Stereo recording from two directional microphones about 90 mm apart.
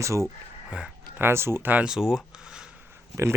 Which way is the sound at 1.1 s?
25° right (ahead or behind).